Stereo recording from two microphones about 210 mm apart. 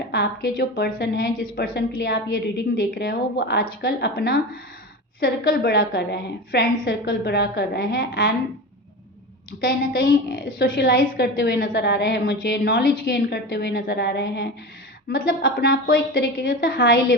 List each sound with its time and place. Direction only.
0.1 s a woman's voice: 50° left (ahead or behind)
9.6 s a woman's voice: 45° left (ahead or behind)